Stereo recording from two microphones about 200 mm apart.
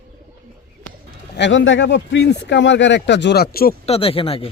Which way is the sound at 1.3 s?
65° left (ahead or behind).